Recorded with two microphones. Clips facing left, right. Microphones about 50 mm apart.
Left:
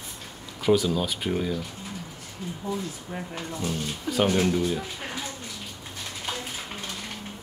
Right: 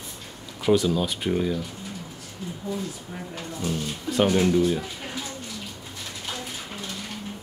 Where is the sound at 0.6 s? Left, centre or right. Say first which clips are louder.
Right 1 dB; centre.